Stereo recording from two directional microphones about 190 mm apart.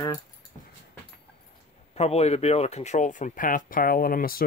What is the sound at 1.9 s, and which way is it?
Speech, 35° left (ahead or behind).